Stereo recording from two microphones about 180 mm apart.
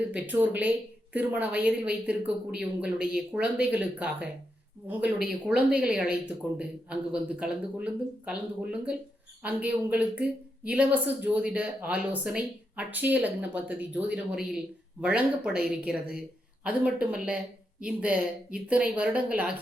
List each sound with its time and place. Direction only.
0.1 s a woman's voice: 10° right (ahead or behind)